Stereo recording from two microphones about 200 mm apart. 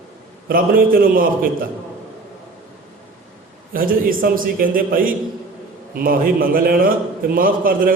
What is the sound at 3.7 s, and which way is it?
A man's voice, 45° right (ahead or behind).